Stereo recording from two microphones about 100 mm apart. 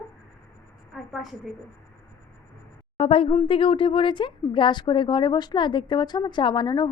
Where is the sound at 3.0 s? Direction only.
70° left (ahead or behind); by 6.9 s 45° left (ahead or behind).